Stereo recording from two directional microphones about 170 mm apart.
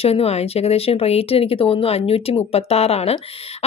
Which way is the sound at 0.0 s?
35° left (ahead or behind).